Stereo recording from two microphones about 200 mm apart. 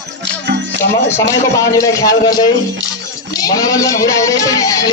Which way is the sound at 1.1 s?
15° left (ahead or behind).